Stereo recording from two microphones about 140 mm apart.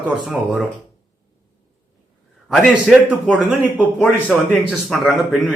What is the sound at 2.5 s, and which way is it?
A man's voice, centre (ahead or behind).